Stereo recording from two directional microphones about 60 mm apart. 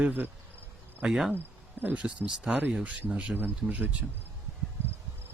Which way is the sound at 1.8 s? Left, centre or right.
Right.